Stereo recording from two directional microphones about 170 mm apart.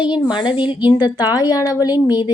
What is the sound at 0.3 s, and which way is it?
A woman's voice, 30° left (ahead or behind).